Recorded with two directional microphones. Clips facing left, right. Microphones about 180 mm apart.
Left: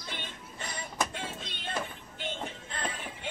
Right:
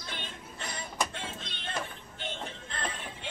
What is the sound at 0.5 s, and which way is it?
Music, 10° left (ahead or behind).